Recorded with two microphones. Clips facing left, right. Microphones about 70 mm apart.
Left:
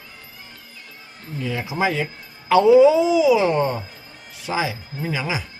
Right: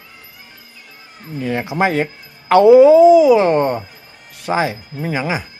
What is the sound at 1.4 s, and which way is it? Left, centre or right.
Speech, right.